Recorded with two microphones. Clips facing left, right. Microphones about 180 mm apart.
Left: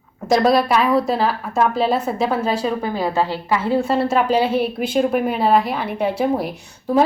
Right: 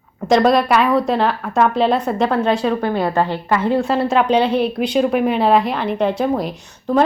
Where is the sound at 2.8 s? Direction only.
60° right (ahead or behind).